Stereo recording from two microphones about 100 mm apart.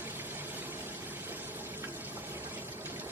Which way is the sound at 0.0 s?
20° right (ahead or behind).